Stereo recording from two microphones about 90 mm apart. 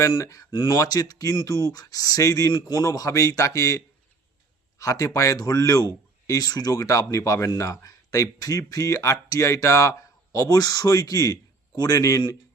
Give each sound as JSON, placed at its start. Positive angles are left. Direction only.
{"t": 0.0, "sound": "speech", "side_deg": 35}
{"t": 0.5, "sound": "speech", "side_deg": 55}
{"t": 0.8, "sound": "speech", "side_deg": 40}